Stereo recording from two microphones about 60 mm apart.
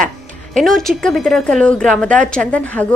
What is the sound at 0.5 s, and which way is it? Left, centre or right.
Speech, centre.